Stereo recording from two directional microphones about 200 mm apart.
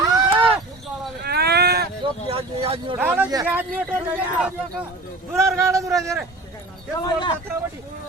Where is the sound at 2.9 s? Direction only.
10° right (ahead or behind).